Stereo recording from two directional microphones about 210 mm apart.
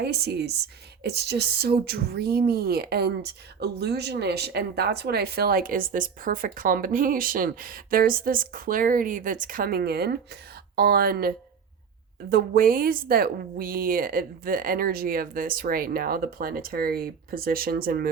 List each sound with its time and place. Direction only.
0.0 s speech: 50° right (ahead or behind)